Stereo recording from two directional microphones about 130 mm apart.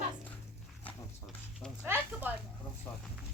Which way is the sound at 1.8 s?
15° right (ahead or behind).